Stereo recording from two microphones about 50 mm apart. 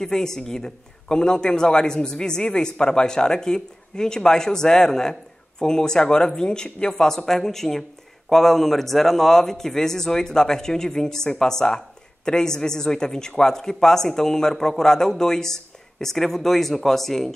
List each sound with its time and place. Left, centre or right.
0.0 s speech: centre